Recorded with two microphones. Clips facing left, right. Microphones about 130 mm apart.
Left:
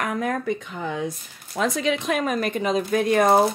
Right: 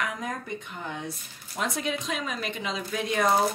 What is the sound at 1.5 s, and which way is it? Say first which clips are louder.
A woman's voice: left 7 dB; 75° left (ahead or behind).